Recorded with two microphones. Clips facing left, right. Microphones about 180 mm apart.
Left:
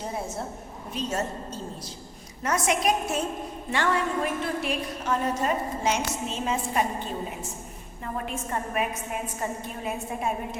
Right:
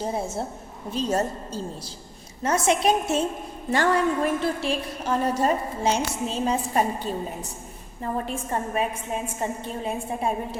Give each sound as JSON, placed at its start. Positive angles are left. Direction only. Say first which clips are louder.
{"t": 0.0, "sound": "a woman's voice", "louder": "right 4 dB", "side_deg": -30}
{"t": 3.7, "sound": "a woman's voice", "louder": "right 5 dB", "side_deg": -40}